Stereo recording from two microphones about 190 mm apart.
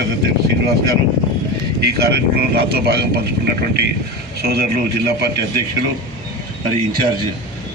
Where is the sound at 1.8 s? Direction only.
60° right (ahead or behind).